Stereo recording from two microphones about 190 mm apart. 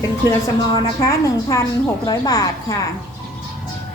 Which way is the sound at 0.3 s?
20° left (ahead or behind).